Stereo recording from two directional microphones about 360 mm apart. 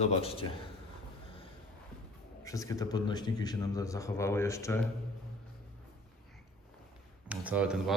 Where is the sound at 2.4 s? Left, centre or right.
Centre.